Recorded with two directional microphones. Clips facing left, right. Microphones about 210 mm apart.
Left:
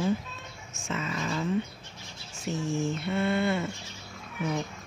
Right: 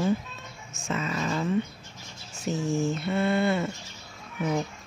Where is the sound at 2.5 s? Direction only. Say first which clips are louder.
Right 3 dB; 40° right (ahead or behind).